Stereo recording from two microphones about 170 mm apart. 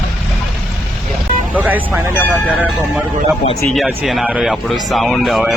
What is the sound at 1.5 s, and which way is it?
Vehicle, 10° right (ahead or behind).